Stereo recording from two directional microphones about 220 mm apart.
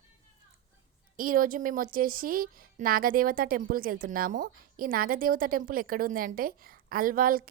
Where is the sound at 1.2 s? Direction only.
40° right (ahead or behind).